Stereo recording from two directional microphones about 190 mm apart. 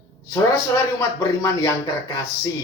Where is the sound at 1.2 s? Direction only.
20° left (ahead or behind).